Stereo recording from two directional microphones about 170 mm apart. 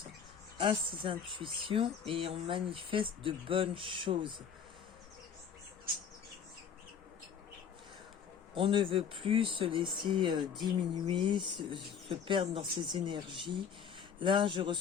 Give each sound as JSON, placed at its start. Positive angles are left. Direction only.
{"t": 0.6, "sound": "speech", "side_deg": -30}
{"t": 8.5, "sound": "speech", "side_deg": -30}